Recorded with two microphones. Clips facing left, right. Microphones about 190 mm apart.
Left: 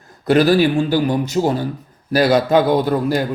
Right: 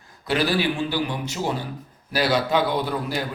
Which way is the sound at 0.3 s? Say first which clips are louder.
Left 9 dB; 45° left (ahead or behind).